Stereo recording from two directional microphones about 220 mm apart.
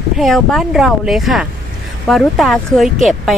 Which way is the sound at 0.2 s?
Centre (ahead or behind).